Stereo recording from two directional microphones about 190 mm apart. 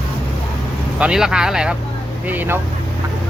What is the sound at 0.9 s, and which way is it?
Speech, 5° right (ahead or behind).